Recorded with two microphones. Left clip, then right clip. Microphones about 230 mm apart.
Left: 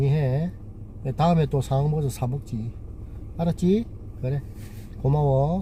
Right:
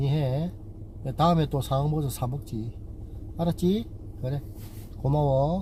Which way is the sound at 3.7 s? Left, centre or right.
Centre.